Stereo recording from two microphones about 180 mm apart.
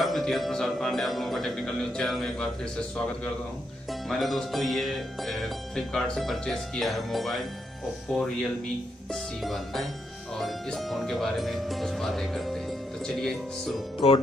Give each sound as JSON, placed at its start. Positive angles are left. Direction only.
{"t": 0.0, "sound": "speech", "side_deg": 0}
{"t": 4.1, "sound": "speech", "side_deg": 0}
{"t": 14.0, "sound": "speech", "side_deg": 30}